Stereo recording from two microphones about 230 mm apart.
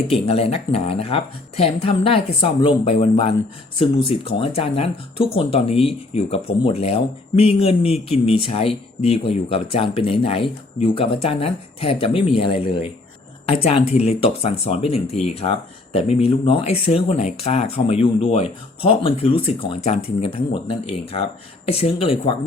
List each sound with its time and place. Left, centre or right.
0.1 s speech: left